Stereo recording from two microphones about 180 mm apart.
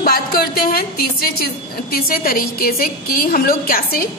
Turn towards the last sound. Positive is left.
turn(degrees=55)  # may be behind; listen again after turning